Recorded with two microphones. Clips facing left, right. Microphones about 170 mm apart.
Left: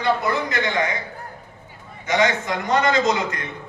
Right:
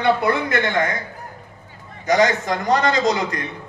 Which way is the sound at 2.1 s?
40° right (ahead or behind).